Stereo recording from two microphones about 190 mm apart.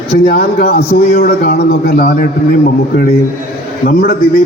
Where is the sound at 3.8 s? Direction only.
50° left (ahead or behind).